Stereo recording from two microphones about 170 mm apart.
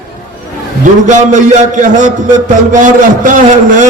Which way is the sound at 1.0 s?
50° right (ahead or behind).